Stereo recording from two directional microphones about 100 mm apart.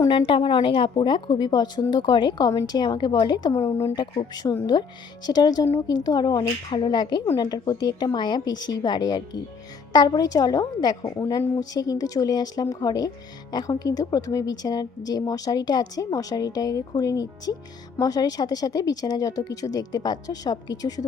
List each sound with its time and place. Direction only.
0.1 s a woman's voice: 55° left (ahead or behind)
3.5 s speech: 30° left (ahead or behind)
4.7 s a woman's voice: 40° left (ahead or behind)